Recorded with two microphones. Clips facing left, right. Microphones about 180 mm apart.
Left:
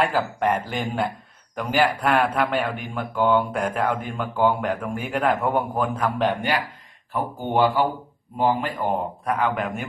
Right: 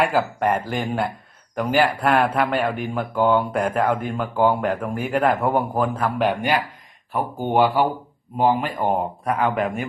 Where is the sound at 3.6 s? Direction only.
50° right (ahead or behind).